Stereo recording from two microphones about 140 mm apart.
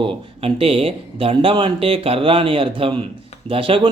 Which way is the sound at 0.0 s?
40° right (ahead or behind).